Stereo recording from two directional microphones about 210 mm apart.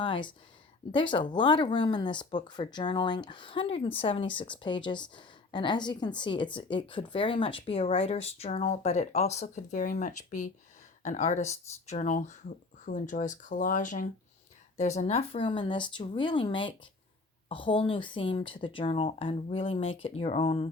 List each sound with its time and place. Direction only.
0.0 s a woman's voice: 25° left (ahead or behind)